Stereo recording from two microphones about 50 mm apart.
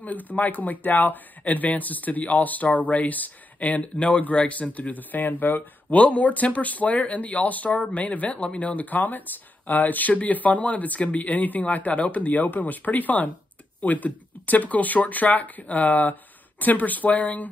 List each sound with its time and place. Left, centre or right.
0.0 s speech: left